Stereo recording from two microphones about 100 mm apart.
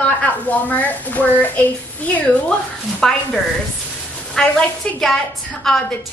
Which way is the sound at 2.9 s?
5° left (ahead or behind).